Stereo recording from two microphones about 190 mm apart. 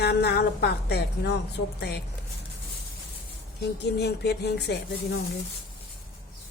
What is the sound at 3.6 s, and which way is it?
Speech, 60° left (ahead or behind).